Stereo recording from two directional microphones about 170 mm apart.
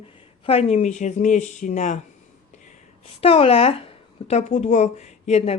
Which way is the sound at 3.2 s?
35° left (ahead or behind).